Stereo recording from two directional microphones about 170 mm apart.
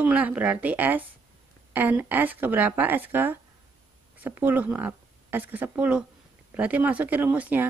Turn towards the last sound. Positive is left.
turn(degrees=-10)  # may be behind; listen again after turning